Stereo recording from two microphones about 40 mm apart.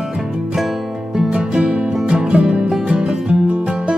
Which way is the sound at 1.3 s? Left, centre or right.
Right.